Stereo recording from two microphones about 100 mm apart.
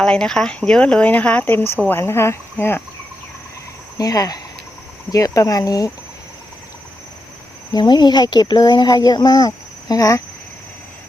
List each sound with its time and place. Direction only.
0.0 s speech: 5° left (ahead or behind)
3.9 s speech: 35° left (ahead or behind)
7.7 s speech: 45° left (ahead or behind)